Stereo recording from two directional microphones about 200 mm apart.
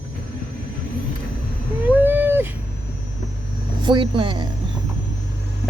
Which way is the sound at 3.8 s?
25° right (ahead or behind).